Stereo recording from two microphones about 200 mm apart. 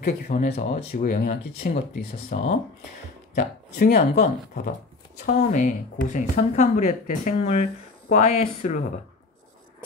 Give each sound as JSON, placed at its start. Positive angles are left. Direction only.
{"t": 0.0, "sound": "speech", "side_deg": 35}
{"t": 2.3, "sound": "speech", "side_deg": 50}